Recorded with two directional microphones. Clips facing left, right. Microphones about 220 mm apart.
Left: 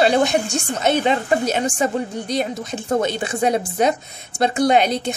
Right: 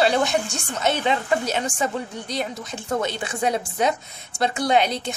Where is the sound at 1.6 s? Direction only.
25° left (ahead or behind).